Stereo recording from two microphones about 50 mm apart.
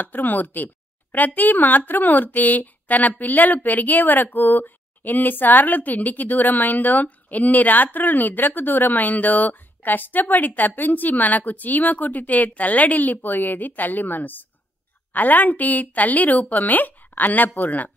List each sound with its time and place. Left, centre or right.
0.0 s a woman's voice: left